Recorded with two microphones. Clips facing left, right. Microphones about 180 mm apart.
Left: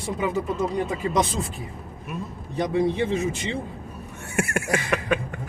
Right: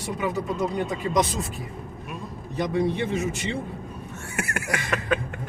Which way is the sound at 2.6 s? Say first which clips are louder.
Left 2 dB; 30° left (ahead or behind).